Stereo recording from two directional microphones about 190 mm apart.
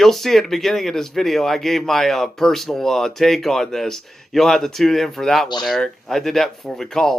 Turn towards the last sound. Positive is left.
turn(degrees=0)  # may be behind; listen again after turning